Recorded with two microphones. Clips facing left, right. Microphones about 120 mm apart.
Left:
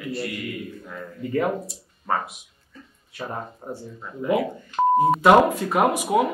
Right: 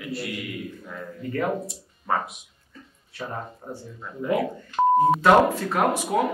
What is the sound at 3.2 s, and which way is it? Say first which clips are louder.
Speech: left 1 dB; 15° left (ahead or behind).